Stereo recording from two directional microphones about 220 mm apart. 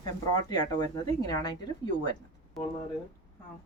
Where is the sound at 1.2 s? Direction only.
20° left (ahead or behind).